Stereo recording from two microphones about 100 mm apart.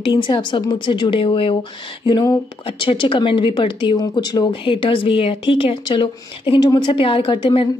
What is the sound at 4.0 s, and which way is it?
A woman's voice, 45° left (ahead or behind).